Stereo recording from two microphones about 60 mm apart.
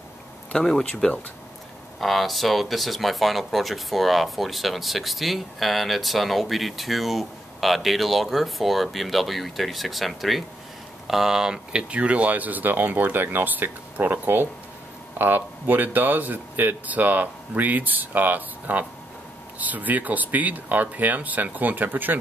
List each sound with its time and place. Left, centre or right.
0.5 s speech: centre; by 22.2 s right